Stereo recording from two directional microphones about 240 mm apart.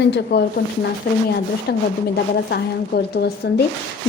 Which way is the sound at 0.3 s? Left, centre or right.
Left.